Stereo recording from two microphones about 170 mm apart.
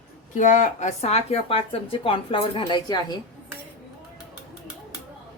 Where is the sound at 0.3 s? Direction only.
45° left (ahead or behind); by 3.2 s 25° left (ahead or behind).